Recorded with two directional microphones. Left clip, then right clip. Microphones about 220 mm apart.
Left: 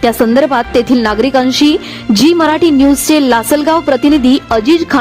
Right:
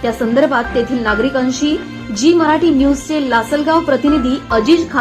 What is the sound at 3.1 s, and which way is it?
A woman's voice, 55° left (ahead or behind).